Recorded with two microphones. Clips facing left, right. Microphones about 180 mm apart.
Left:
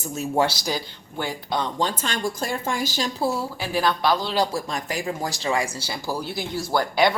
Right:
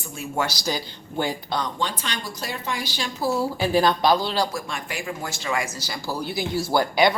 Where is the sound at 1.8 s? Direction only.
45° left (ahead or behind).